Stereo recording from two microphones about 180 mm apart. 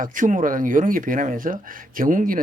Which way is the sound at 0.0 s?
45° right (ahead or behind).